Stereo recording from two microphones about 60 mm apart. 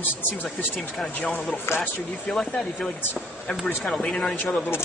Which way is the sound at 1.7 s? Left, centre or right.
Left.